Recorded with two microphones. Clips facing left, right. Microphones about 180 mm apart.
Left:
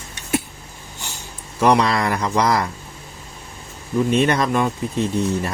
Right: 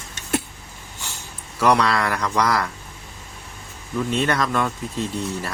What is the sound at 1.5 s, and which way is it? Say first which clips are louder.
Speech: left 2 dB; 20° left (ahead or behind).